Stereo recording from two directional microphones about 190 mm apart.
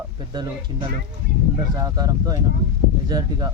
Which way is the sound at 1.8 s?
20° right (ahead or behind).